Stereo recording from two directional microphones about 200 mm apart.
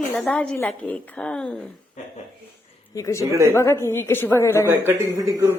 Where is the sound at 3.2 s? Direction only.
15° right (ahead or behind).